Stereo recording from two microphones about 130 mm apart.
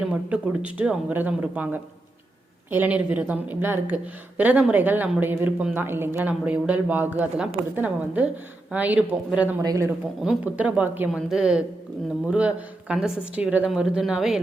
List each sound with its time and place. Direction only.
0.1 s speech: 10° right (ahead or behind)
9.6 s speech: 25° right (ahead or behind)
10.2 s speech: 10° right (ahead or behind)